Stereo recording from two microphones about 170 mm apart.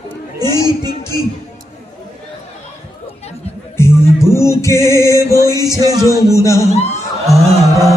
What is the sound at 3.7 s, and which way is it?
Music, 15° left (ahead or behind).